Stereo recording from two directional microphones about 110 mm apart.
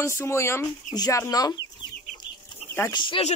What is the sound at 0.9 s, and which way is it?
Speech, 35° left (ahead or behind).